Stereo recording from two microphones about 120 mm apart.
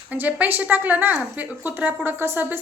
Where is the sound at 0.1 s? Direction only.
15° right (ahead or behind).